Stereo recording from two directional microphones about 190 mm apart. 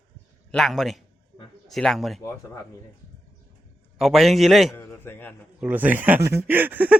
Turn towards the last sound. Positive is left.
turn(degrees=-10)  # may be behind; listen again after turning